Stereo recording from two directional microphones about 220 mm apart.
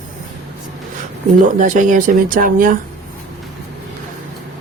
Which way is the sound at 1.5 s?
35° right (ahead or behind).